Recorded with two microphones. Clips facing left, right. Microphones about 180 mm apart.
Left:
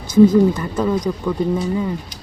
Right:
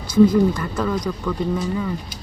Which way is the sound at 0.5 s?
25° left (ahead or behind).